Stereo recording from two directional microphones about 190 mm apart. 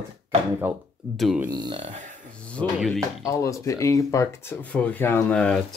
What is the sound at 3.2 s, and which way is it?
Speech, 15° left (ahead or behind).